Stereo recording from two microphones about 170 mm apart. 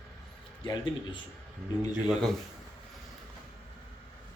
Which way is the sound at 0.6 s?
30° left (ahead or behind).